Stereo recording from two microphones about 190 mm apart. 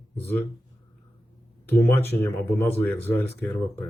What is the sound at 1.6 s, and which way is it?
Speech, 10° left (ahead or behind).